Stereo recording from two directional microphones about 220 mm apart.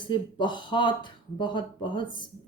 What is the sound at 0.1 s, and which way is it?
A woman's voice, 20° left (ahead or behind).